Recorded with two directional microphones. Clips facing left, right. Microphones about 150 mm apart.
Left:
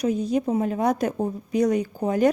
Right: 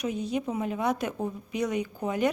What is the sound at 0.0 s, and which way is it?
A woman's voice, 40° left (ahead or behind).